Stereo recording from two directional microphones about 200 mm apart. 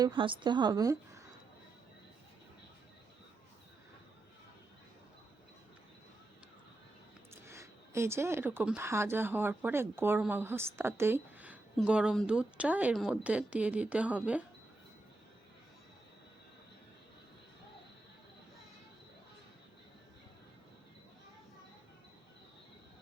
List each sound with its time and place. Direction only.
0.0 s a woman's voice: 25° right (ahead or behind)
7.4 s speech: 15° right (ahead or behind)